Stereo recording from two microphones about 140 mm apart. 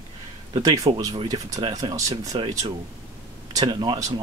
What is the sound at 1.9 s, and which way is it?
Speech, 25° right (ahead or behind).